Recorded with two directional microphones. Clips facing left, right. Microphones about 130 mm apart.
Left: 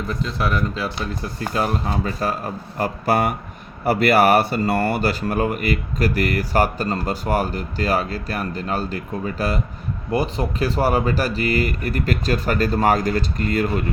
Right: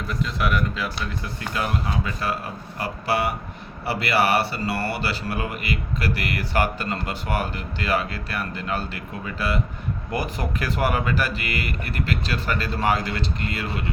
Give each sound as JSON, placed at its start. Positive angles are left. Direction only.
{"t": 0.1, "sound": "speech", "side_deg": 30}
{"t": 10.1, "sound": "speech", "side_deg": 25}